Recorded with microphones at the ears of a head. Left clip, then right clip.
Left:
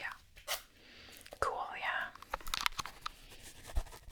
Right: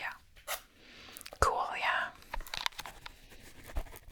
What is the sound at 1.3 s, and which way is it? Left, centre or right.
Whispering, right.